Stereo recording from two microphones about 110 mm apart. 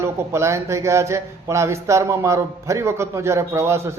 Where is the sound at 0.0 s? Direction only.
25° right (ahead or behind).